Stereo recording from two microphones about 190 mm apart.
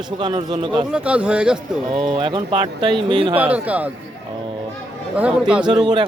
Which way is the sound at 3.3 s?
10° right (ahead or behind).